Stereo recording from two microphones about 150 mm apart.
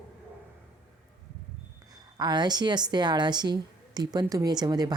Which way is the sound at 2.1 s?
30° right (ahead or behind).